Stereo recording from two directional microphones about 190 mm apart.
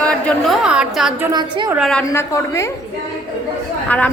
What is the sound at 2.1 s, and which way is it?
Speech, 15° left (ahead or behind).